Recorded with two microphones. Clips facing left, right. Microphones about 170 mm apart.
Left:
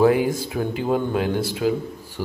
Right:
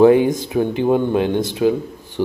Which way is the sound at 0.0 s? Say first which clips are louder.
Right 6 dB; 25° right (ahead or behind).